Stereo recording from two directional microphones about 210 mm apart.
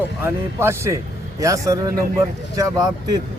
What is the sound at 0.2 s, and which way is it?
Speech, 10° right (ahead or behind).